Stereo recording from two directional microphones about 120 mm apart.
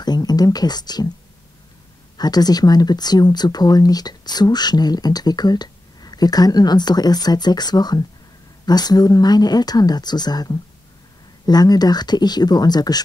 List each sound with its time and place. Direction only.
0.0 s speech: 35° left (ahead or behind)
2.1 s speech: 35° left (ahead or behind)